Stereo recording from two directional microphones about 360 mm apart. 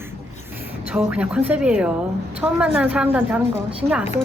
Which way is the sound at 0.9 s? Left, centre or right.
Centre.